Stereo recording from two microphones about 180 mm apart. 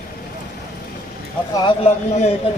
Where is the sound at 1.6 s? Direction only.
35° left (ahead or behind).